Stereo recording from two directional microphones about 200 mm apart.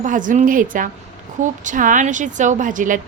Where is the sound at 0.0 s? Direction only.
40° right (ahead or behind).